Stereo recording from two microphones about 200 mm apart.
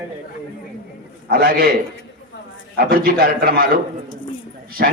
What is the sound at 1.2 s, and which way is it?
Speech, 50° right (ahead or behind).